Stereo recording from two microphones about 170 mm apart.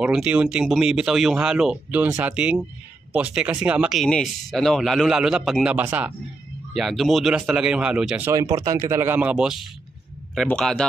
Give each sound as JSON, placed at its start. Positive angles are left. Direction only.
{"t": 0.0, "sound": "speech", "side_deg": -5}
{"t": 8.3, "sound": "speech", "side_deg": -20}